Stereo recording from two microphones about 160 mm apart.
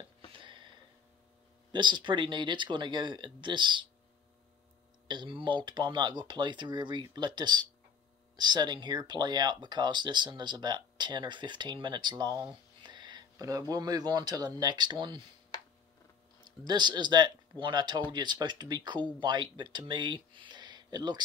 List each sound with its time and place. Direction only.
0.3 s a sound: 30° right (ahead or behind)
1.7 s speech: 30° right (ahead or behind)
5.0 s speech: 30° right (ahead or behind)
16.6 s speech: 30° right (ahead or behind)